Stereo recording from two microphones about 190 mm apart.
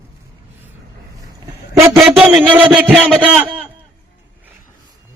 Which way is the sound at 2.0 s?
5° right (ahead or behind).